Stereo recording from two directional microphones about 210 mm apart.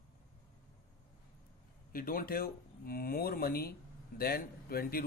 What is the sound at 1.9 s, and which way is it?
Speech, 45° left (ahead or behind).